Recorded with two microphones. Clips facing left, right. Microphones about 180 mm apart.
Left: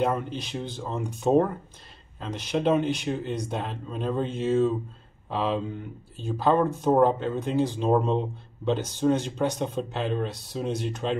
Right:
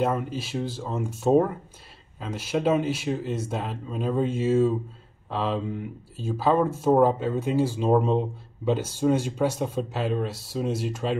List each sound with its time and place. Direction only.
0.0 s speech: 5° right (ahead or behind)